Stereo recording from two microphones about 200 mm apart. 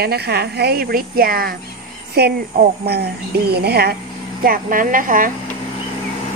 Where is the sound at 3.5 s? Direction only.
55° right (ahead or behind).